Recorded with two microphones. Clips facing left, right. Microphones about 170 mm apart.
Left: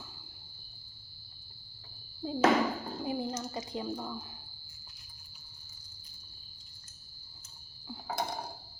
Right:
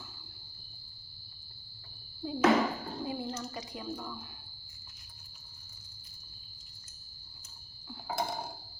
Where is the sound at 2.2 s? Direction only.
30° left (ahead or behind).